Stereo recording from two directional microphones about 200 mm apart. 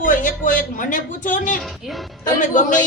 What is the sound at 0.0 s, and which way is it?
A man's voice, 40° left (ahead or behind).